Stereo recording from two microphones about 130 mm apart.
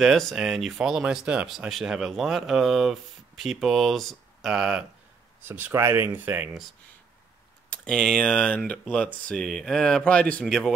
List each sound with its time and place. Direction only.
0.0 s speech: centre (ahead or behind)
5.4 s speech: 15° right (ahead or behind)
7.7 s speech: 5° left (ahead or behind)